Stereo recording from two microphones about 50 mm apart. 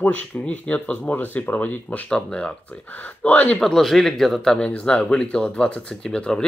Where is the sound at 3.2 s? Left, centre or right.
Left.